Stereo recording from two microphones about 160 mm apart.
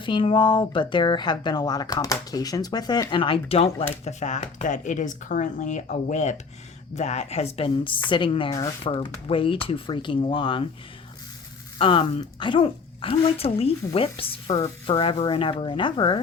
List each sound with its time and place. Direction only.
0.0 s a woman's voice: 30° left (ahead or behind)
11.8 s a woman's voice: 30° left (ahead or behind)